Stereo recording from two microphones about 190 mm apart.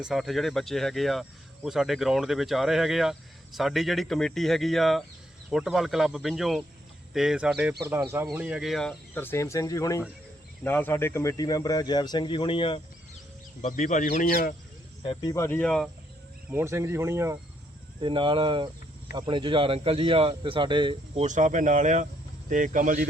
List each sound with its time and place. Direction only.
0.0 s speech: centre (ahead or behind); by 12.8 s 25° left (ahead or behind)
13.6 s speech: 40° left (ahead or behind)
15.0 s speech: 25° left (ahead or behind); by 15.9 s centre (ahead or behind)
16.5 s speech: 15° right (ahead or behind)
18.0 s speech: 25° right (ahead or behind); by 23.0 s 45° right (ahead or behind)